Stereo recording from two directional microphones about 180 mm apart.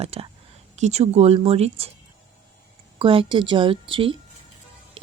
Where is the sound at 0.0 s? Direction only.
35° right (ahead or behind).